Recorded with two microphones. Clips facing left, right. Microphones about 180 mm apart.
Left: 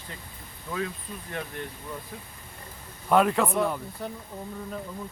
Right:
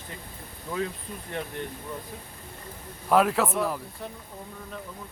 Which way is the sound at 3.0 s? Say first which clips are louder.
Even; centre (ahead or behind).